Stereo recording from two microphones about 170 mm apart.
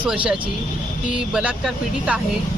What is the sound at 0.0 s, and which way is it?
Speech, 5° right (ahead or behind).